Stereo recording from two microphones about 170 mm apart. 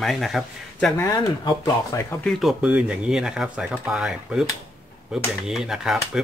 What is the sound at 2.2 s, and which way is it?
Speech, centre (ahead or behind).